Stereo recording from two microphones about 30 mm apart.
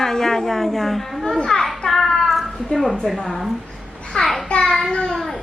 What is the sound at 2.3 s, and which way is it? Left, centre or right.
Cat, centre.